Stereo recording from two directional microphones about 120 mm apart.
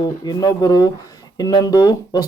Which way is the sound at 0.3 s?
35° left (ahead or behind).